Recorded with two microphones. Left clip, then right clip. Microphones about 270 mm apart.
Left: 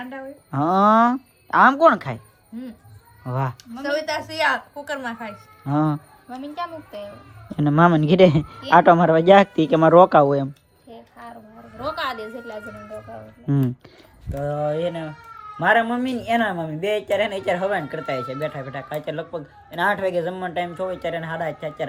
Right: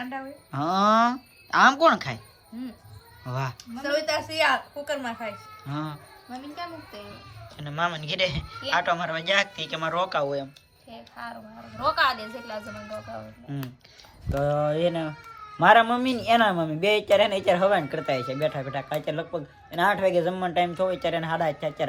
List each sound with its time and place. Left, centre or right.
0.0 s speech: centre
3.2 s speech: centre
7.6 s speech: centre
11.8 s speech: centre
14.3 s speech: centre